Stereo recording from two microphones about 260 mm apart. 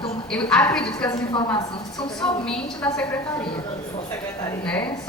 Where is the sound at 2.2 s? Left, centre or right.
Centre.